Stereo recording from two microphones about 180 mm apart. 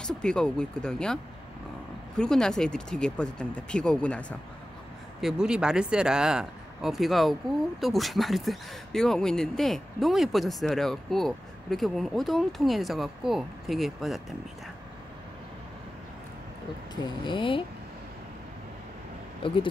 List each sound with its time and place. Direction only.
0.0 s speech: 5° left (ahead or behind)
5.2 s speech: 5° right (ahead or behind)
16.9 s speech: 25° left (ahead or behind)
19.4 s speech: 30° left (ahead or behind)